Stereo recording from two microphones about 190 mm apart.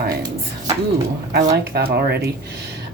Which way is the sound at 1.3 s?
60° right (ahead or behind).